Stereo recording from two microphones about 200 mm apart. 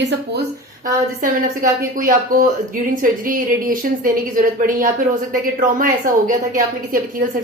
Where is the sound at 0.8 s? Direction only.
40° right (ahead or behind).